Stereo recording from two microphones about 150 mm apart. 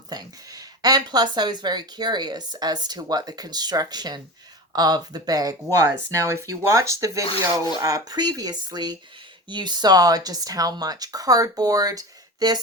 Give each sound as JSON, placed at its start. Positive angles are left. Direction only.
{"t": 0.1, "sound": "speech", "side_deg": -25}